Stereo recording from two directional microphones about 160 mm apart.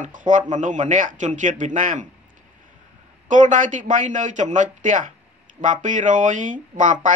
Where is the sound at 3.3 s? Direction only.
50° right (ahead or behind).